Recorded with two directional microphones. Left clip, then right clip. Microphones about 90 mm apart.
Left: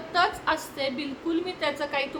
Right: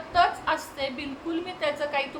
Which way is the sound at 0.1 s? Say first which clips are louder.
Right 1 dB; 35° left (ahead or behind).